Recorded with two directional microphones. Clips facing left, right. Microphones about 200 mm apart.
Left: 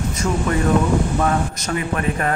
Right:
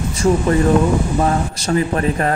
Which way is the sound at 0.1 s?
30° right (ahead or behind).